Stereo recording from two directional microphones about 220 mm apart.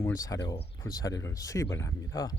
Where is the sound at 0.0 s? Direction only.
15° left (ahead or behind).